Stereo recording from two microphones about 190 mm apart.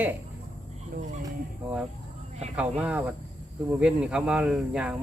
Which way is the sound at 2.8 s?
5° right (ahead or behind).